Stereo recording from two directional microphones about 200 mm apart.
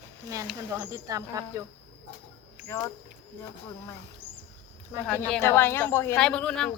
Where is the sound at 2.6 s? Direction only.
15° left (ahead or behind).